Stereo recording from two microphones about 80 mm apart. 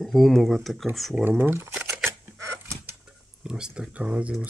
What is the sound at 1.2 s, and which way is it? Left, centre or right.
Speech, right.